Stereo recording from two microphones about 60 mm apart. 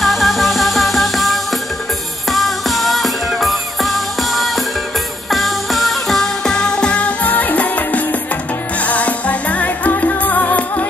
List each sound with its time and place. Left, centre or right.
0.0 s music: centre; by 10.9 s left